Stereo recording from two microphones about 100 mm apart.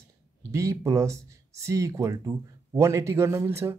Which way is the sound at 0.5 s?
30° right (ahead or behind).